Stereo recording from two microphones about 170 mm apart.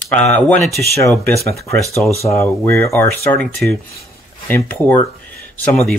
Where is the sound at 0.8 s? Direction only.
15° left (ahead or behind).